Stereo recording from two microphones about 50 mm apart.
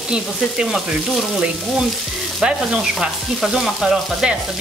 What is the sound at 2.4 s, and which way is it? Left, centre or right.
Frying, centre.